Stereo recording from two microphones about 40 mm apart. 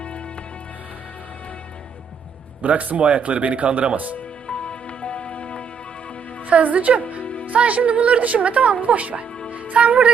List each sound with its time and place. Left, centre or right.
2.6 s a woman's voice: right
4.4 s music: left
6.5 s a woman's voice: right
9.5 s music: right